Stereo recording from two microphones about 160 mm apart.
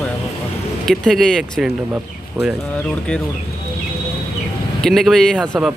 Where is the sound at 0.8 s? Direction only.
5° left (ahead or behind).